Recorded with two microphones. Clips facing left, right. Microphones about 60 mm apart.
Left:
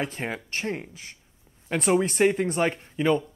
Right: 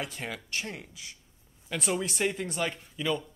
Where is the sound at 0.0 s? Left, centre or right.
Left.